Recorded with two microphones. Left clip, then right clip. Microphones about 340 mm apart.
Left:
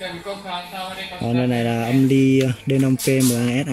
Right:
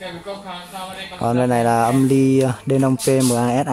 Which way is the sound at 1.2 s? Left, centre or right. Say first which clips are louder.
Right 5 dB; right.